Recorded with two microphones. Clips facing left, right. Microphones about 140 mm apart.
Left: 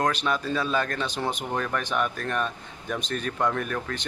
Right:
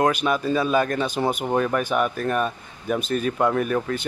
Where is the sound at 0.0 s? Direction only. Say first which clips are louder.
Right 5 dB; 10° right (ahead or behind).